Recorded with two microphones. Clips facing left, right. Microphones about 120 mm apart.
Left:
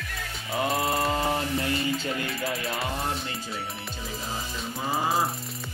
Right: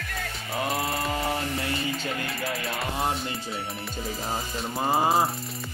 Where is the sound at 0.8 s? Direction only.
30° left (ahead or behind).